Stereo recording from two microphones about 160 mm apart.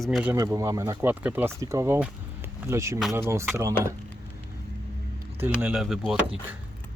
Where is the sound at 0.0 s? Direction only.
Centre (ahead or behind).